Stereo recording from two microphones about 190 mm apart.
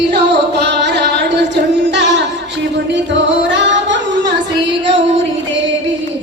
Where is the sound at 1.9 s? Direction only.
70° right (ahead or behind).